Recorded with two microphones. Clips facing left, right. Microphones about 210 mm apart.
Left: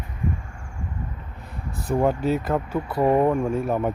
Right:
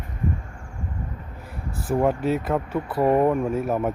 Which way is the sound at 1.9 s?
Centre (ahead or behind).